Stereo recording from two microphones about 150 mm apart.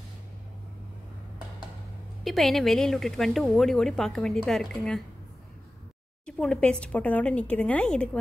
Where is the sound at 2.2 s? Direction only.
Centre (ahead or behind).